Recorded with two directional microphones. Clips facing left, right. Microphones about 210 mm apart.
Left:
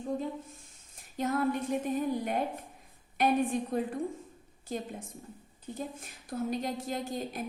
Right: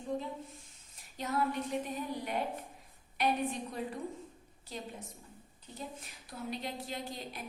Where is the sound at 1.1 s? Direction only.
50° left (ahead or behind).